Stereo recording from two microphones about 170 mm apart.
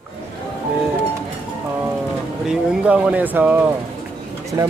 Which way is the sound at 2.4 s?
5° right (ahead or behind).